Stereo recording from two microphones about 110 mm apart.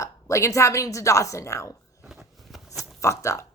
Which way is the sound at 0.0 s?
30° left (ahead or behind).